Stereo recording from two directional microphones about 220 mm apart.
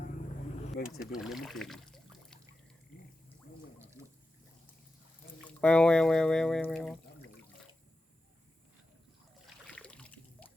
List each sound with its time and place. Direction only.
0.8 s speech: 40° left (ahead or behind)
1.2 s speech: centre (ahead or behind)
4.0 s water: 15° right (ahead or behind)
5.5 s speech: 5° left (ahead or behind)
9.6 s a sound: 5° left (ahead or behind)